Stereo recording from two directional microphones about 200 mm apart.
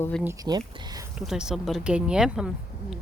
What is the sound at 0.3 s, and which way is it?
Speech, 20° right (ahead or behind).